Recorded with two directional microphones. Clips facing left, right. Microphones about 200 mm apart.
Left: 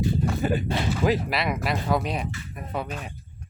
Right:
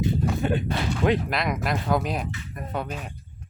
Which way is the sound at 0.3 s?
5° left (ahead or behind).